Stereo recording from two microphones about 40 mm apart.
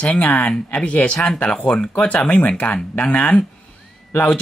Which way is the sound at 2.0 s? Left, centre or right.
Left.